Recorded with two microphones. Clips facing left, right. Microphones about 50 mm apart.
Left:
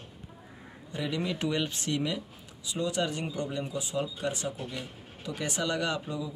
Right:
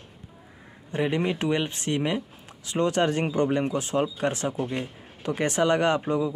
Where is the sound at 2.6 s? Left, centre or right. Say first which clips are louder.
Right 7 dB; right.